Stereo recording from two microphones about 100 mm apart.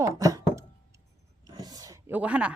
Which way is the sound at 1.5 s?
40° right (ahead or behind).